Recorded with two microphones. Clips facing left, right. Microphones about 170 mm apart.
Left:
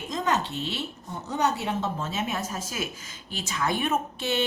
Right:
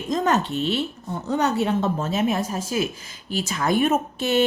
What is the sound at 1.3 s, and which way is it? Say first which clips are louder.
Speech: right 5 dB; 55° right (ahead or behind).